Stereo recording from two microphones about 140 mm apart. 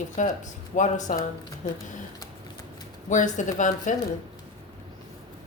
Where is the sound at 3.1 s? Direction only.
65° left (ahead or behind).